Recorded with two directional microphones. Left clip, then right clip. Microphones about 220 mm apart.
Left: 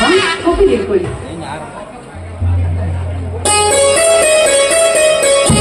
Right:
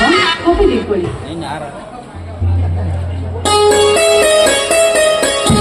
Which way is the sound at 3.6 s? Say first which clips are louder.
Right 1 dB; 40° left (ahead or behind).